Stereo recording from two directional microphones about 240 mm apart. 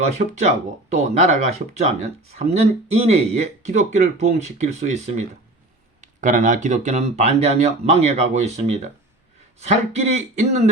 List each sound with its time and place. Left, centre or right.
0.2 s speech: right